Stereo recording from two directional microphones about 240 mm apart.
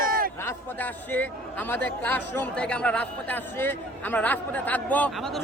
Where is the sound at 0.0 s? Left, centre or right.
Right.